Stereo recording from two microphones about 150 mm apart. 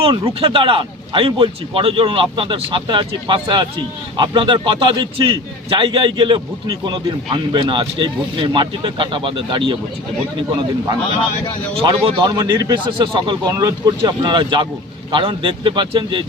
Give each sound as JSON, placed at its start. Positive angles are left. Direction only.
{"t": 0.0, "sound": "a man's voice", "side_deg": -35}
{"t": 11.8, "sound": "a man's voice", "side_deg": -35}